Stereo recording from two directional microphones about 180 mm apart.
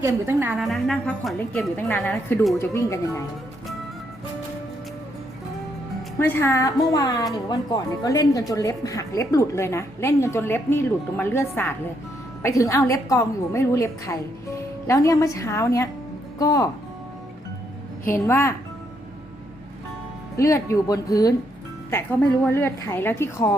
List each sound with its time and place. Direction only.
0.0 s a woman's voice: 15° right (ahead or behind)
0.5 s a woman's voice: centre (ahead or behind)
1.7 s speech: 10° left (ahead or behind)
6.1 s a woman's voice: 15° left (ahead or behind)
18.1 s speech: 15° left (ahead or behind)
20.3 s a woman's voice: 15° left (ahead or behind)
22.4 s speech: 15° left (ahead or behind)